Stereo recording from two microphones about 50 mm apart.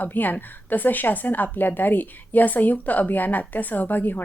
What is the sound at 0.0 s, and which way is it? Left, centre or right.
Speech, left.